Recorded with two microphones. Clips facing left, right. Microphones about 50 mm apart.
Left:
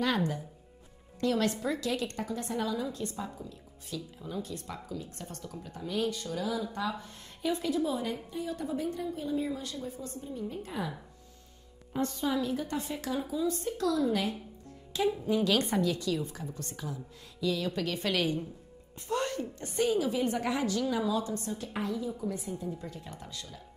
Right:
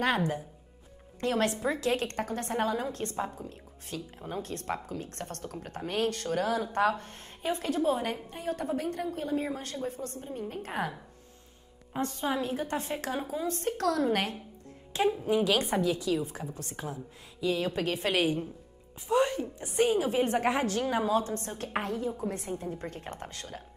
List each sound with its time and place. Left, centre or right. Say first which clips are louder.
1.2 s a woman's voice: right 1 dB; right
12.0 s speech: even; right
14.9 s speech: right 2 dB; right
15.4 s a woman's voice: right 1 dB; centre
16.7 s a woman's voice: right 2 dB; right
19.0 s a woman's voice: right 5 dB; centre
19.8 s speech: right 2 dB; right